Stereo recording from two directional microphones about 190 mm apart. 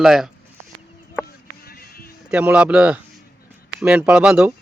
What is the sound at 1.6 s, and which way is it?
Music, 55° left (ahead or behind).